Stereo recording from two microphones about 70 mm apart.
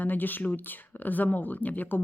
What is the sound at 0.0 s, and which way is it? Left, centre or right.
Speech, left.